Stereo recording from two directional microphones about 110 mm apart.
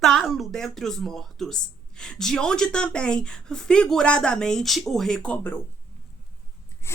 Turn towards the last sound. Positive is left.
turn(degrees=25)  # may be behind; listen again after turning